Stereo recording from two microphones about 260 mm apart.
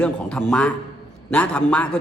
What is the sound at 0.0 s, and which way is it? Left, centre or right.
Speech, centre.